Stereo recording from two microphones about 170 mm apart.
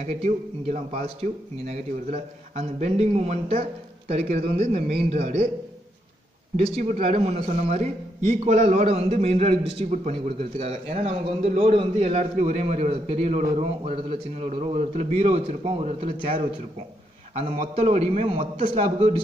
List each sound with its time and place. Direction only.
0.0 s a man's voice: 40° right (ahead or behind)
6.5 s a man's voice: 45° right (ahead or behind)